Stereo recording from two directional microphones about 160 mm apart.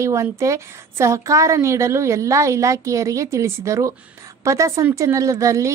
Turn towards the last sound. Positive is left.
turn(degrees=-20)  # may be behind; listen again after turning